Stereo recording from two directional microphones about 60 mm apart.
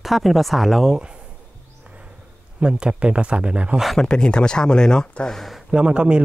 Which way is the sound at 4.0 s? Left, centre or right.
Centre.